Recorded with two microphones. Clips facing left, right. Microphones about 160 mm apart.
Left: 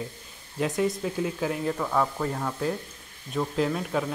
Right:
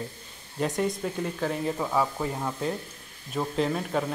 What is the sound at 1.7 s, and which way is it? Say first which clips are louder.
Speech: left 1 dB; 10° right (ahead or behind).